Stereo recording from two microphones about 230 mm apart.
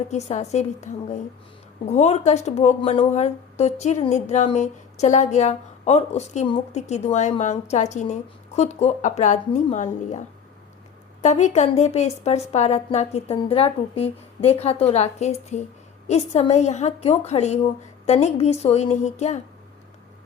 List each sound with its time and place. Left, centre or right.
0.1 s speech: left
11.2 s speech: left